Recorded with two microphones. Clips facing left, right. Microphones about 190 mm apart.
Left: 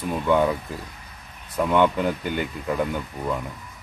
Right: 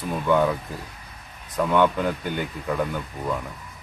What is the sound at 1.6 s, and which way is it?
Speech, 5° left (ahead or behind).